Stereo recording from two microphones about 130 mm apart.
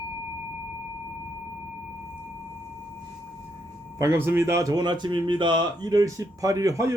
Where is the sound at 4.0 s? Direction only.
20° right (ahead or behind).